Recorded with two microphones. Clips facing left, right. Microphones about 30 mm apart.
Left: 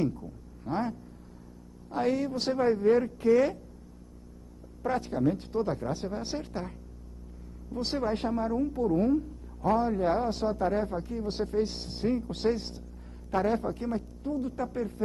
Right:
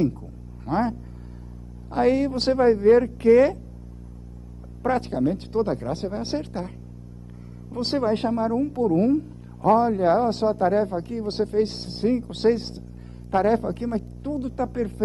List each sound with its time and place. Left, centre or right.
0.7 s a woman's voice: right
4.8 s a woman's voice: right
7.7 s a woman's voice: right